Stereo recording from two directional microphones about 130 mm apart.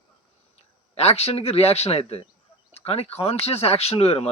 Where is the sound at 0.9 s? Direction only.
55° left (ahead or behind).